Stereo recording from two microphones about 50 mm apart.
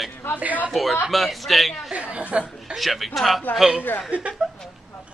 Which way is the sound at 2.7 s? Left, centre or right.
Centre.